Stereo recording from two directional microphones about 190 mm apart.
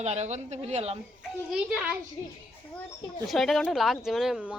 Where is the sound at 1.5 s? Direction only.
5° right (ahead or behind).